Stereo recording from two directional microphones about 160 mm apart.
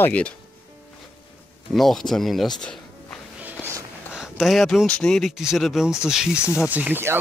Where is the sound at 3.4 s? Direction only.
15° right (ahead or behind).